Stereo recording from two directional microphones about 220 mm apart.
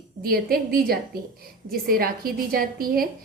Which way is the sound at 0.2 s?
45° right (ahead or behind).